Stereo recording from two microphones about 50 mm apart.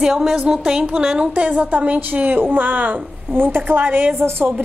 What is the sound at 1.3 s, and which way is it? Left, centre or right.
A woman's voice, right.